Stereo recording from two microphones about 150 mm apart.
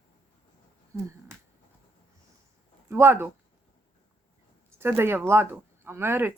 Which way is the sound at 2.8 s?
15° right (ahead or behind).